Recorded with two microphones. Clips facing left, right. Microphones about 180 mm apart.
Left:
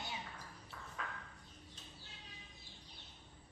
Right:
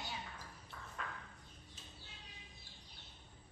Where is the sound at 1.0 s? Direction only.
Centre (ahead or behind).